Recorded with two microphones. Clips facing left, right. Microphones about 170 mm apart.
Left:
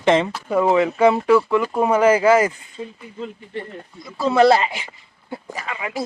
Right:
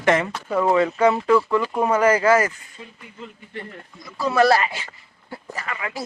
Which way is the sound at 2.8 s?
40° left (ahead or behind).